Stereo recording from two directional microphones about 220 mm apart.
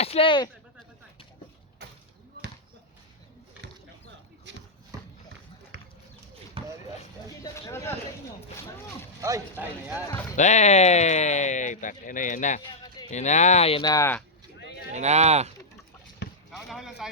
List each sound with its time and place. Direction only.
0.0 s speech: 25° left (ahead or behind)
4.5 s shuffle: 55° right (ahead or behind)
4.9 s run: 15° right (ahead or behind)
5.7 s a sound: 50° right (ahead or behind)
6.6 s basketball bounce: 25° right (ahead or behind)
7.4 s speech: 15° left (ahead or behind)
9.2 s speech: 10° right (ahead or behind)
10.3 s speech: 30° left (ahead or behind); by 14.3 s 10° left (ahead or behind)
14.9 s speech: 30° right (ahead or behind)
16.2 s basketball bounce: 50° left (ahead or behind)
16.6 s a sound: centre (ahead or behind)